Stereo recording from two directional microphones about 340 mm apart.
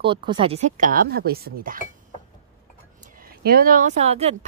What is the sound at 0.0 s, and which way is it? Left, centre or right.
A woman's voice, centre.